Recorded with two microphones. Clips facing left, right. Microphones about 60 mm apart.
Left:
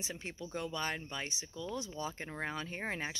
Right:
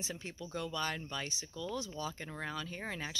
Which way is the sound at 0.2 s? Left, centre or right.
Left.